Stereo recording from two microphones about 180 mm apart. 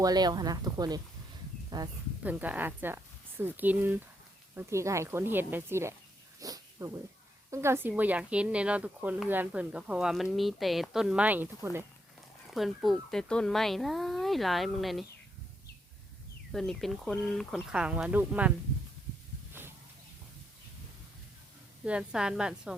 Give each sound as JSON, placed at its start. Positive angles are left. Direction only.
{"t": 0.0, "sound": "speech", "side_deg": -20}
{"t": 2.2, "sound": "speech", "side_deg": -10}
{"t": 6.4, "sound": "dog", "side_deg": -20}
{"t": 7.5, "sound": "speech", "side_deg": -15}
{"t": 12.5, "sound": "speech", "side_deg": 0}
{"t": 16.5, "sound": "speech", "side_deg": 0}
{"t": 19.6, "sound": "a sound", "side_deg": -10}
{"t": 21.8, "sound": "speech", "side_deg": -5}